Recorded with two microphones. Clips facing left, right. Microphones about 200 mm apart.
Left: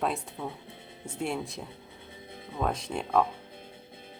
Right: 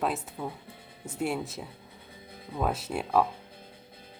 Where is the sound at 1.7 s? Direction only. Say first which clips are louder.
Left 2 dB; 25° left (ahead or behind).